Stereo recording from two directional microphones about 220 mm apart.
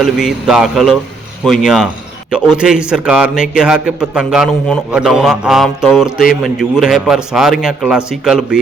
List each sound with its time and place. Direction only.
0.0 s a man's voice: centre (ahead or behind)